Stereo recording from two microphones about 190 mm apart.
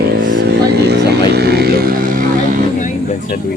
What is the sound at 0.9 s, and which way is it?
Speech, 60° right (ahead or behind).